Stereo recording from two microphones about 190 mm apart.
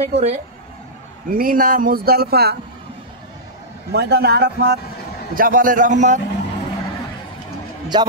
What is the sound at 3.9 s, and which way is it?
Speech, 60° right (ahead or behind).